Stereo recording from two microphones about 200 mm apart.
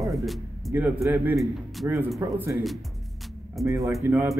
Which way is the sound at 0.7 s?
10° right (ahead or behind).